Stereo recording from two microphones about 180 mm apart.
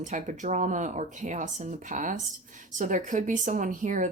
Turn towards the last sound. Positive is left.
turn(degrees=-45)  # may be behind; listen again after turning